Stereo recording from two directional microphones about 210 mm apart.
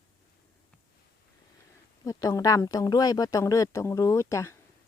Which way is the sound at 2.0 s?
15° left (ahead or behind).